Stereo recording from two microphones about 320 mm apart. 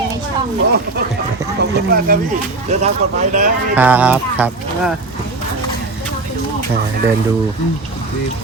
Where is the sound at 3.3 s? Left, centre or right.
Right.